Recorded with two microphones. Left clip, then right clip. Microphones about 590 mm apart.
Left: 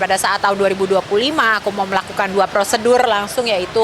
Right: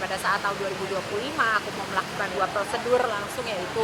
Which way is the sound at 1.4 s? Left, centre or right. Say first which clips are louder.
Left 8 dB; left.